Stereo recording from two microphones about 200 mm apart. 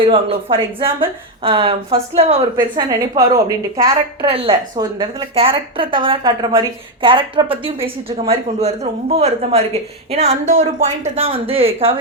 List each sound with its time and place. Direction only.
0.0 s a woman's voice: 30° right (ahead or behind)
2.7 s a woman's voice: 15° right (ahead or behind)
4.3 s a woman's voice: 30° right (ahead or behind)